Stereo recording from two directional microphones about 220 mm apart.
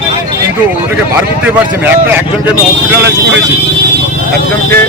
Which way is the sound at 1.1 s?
10° right (ahead or behind).